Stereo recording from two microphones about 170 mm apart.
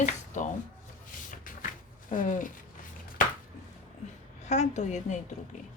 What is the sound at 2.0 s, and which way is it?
Speech, 50° left (ahead or behind).